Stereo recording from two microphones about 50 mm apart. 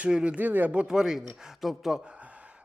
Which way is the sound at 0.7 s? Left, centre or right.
Right.